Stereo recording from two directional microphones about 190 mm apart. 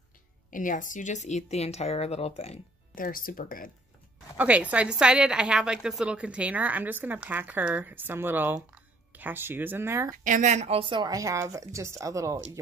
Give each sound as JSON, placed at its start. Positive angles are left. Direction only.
{"t": 0.5, "sound": "speech", "side_deg": 45}
{"t": 2.9, "sound": "speech", "side_deg": 50}
{"t": 4.4, "sound": "a woman's voice", "side_deg": -5}
{"t": 10.1, "sound": "a woman's voice", "side_deg": -40}